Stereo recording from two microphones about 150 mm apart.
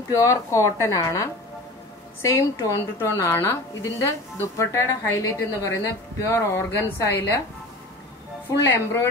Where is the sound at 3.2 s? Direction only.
15° left (ahead or behind).